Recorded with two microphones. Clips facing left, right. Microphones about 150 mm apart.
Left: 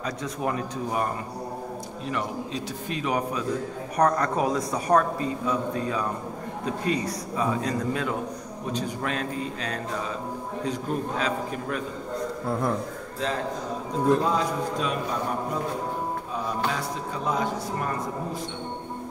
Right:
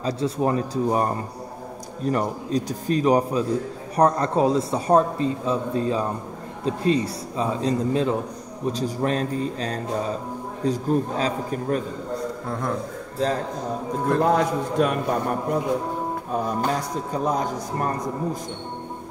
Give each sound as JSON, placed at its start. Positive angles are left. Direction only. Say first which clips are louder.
{"t": 0.0, "sound": "a man's voice", "louder": "right 6 dB", "side_deg": -30}
{"t": 12.4, "sound": "a man's voice", "louder": "left 3 dB", "side_deg": 5}
{"t": 13.2, "sound": "a man's voice", "louder": "right 5 dB", "side_deg": -35}
{"t": 14.2, "sound": "a man's voice", "louder": "right 5 dB", "side_deg": -60}
{"t": 16.6, "sound": "a man's voice", "louder": "right 4 dB", "side_deg": -40}